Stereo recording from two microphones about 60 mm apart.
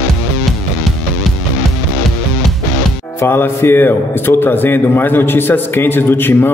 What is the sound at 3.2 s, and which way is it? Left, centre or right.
A man's voice, left.